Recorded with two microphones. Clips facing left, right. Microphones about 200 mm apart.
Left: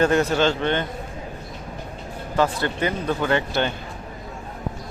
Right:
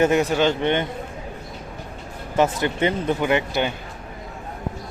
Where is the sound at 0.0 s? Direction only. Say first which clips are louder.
Right 1 dB; 15° right (ahead or behind).